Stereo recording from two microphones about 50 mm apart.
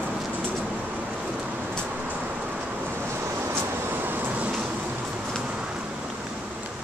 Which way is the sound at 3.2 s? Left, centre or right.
Right.